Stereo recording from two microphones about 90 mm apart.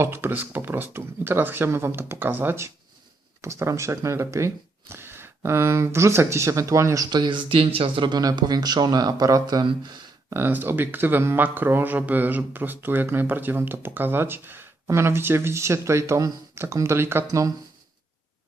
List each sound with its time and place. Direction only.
0.0 s speech: 25° right (ahead or behind)
7.1 s speech: 60° right (ahead or behind)
8.2 s speech: 45° right (ahead or behind)
10.2 s speech: 25° right (ahead or behind)